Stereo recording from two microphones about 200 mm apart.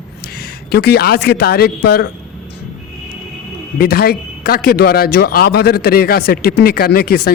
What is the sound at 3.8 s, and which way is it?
Speech, 50° left (ahead or behind).